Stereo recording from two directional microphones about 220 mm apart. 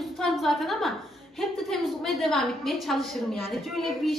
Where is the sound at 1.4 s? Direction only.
Centre (ahead or behind).